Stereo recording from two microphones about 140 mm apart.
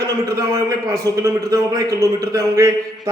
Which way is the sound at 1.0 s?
25° right (ahead or behind).